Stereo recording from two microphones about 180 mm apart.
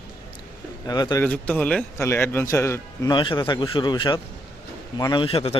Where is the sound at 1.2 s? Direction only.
5° left (ahead or behind).